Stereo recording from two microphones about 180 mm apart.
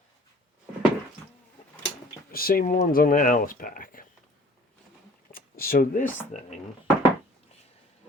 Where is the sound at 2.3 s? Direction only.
55° left (ahead or behind).